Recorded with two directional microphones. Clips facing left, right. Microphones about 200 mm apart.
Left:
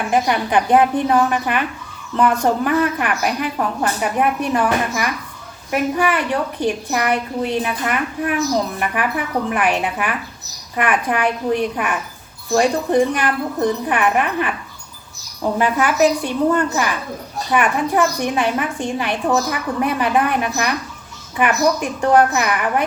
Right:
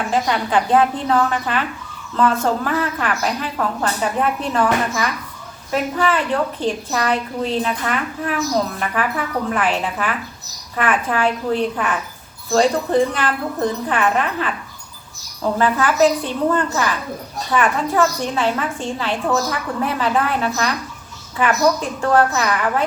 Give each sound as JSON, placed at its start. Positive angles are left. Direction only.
{"t": 0.1, "sound": "a woman's voice", "side_deg": 15}
{"t": 15.5, "sound": "a woman's voice", "side_deg": 15}